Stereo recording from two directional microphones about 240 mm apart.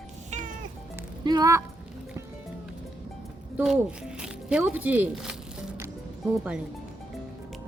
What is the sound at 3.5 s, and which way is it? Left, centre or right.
Speech, centre.